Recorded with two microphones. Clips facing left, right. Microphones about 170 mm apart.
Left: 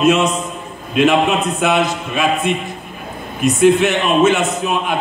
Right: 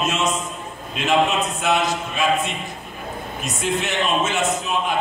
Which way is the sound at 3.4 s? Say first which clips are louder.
Left 13 dB; 60° left (ahead or behind).